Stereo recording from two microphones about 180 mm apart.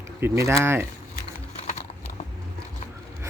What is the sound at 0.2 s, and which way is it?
Speech, 15° right (ahead or behind).